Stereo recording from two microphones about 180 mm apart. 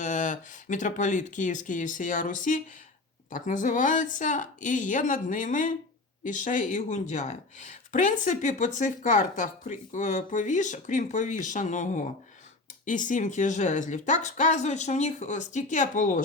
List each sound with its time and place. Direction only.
0.0 s speech: 45° left (ahead or behind)